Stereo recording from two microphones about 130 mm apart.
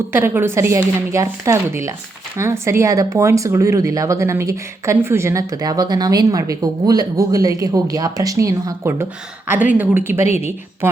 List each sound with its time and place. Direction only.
0.1 s speech: 15° right (ahead or behind)